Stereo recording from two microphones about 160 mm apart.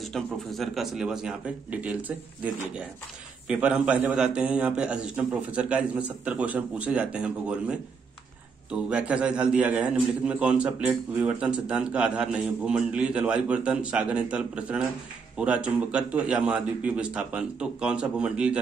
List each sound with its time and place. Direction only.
0.0 s a man's voice: centre (ahead or behind)
8.9 s a man's voice: 10° right (ahead or behind)